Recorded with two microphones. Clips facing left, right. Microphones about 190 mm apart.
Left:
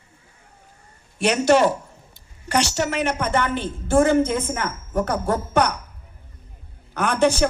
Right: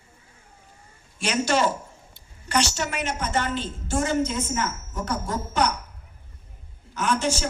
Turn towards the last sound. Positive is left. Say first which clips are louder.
# left 6 dB
turn(degrees=60)  # may be behind; listen again after turning